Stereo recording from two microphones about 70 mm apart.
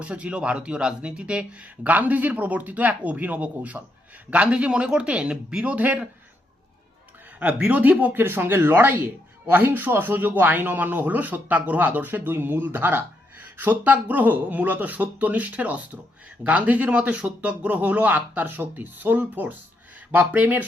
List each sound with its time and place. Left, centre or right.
0.0 s a man's voice: centre
7.3 s a man's voice: right